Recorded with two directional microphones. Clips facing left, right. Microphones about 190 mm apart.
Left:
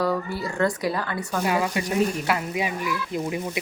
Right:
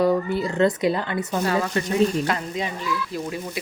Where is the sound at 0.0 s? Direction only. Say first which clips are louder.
Right 5 dB; 20° right (ahead or behind).